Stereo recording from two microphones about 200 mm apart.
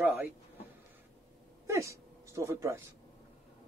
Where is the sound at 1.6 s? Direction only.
15° right (ahead or behind).